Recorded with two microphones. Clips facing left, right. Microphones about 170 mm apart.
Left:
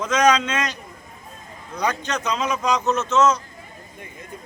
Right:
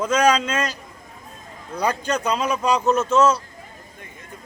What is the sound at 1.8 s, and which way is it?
Speech, 10° right (ahead or behind).